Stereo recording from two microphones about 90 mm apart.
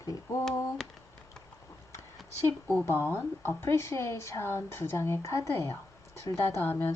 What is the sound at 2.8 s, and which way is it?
Speech, 25° left (ahead or behind).